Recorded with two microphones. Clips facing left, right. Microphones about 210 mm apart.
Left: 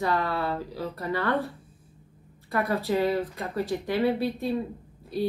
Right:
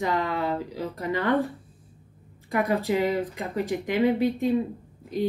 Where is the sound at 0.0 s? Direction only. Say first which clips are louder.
Right 1 dB; 15° right (ahead or behind).